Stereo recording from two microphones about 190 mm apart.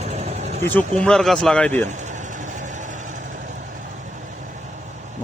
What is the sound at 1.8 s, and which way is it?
Vehicle, 40° right (ahead or behind).